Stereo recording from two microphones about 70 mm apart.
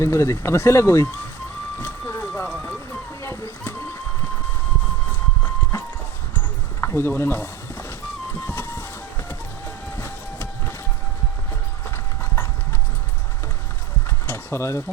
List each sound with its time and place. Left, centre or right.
0.0 s speech: left
1.8 s vehicle: left
2.6 s music: left
3.2 s a sound: left
6.8 s speech: left
8.4 s music: left
9.6 s train: left
14.3 s a sound: left